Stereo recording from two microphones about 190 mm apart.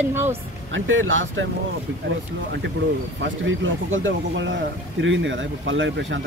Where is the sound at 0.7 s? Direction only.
90° right.